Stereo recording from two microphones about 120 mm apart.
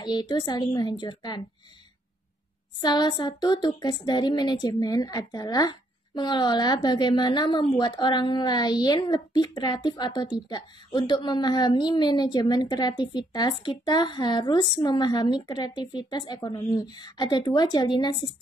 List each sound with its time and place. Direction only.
0.0 s a woman's voice: 35° left (ahead or behind)
2.8 s a woman's voice: 35° left (ahead or behind)